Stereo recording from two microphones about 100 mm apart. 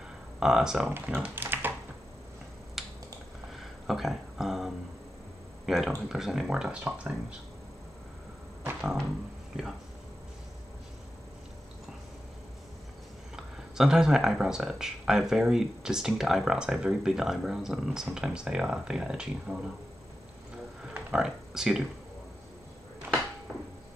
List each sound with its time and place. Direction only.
0.4 s speech: 5° right (ahead or behind)
0.8 s speech: 15° right (ahead or behind)
2.8 s finger snapping: centre (ahead or behind)
3.5 s a sound: centre (ahead or behind)
5.7 s speech: 5° right (ahead or behind)
13.4 s speech: 5° right (ahead or behind)
20.9 s music: 5° right (ahead or behind)